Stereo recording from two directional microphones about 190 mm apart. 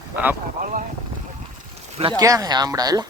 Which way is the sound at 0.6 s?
45° right (ahead or behind).